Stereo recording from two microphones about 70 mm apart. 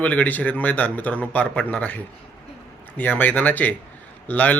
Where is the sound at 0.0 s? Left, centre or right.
Left.